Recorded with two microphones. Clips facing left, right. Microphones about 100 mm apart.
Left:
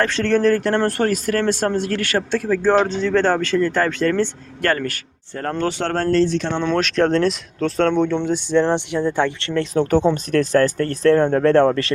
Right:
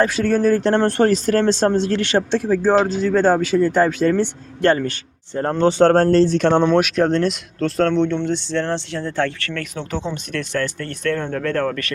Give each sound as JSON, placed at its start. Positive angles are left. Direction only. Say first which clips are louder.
{"t": 0.0, "sound": "speech", "louder": "even", "side_deg": -10}
{"t": 0.6, "sound": "speech", "louder": "right 3 dB", "side_deg": -25}
{"t": 2.8, "sound": "speech", "louder": "right 1 dB", "side_deg": -5}
{"t": 6.7, "sound": "speech", "louder": "right 2 dB", "side_deg": -10}
{"t": 9.7, "sound": "speech", "louder": "left 13 dB", "side_deg": 50}